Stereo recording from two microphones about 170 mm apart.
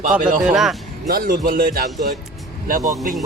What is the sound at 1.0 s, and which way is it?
A man's voice, 55° right (ahead or behind).